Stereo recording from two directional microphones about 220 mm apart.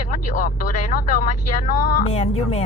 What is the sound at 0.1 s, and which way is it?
Speech, 35° left (ahead or behind).